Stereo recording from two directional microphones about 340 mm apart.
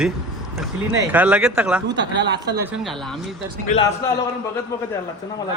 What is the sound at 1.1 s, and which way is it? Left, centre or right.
Speech, centre.